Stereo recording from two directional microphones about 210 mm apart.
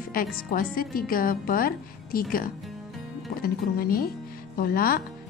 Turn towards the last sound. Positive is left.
turn(degrees=45)  # may be behind; listen again after turning